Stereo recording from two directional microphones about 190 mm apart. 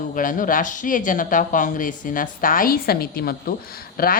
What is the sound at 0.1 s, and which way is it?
A woman's voice, 45° left (ahead or behind).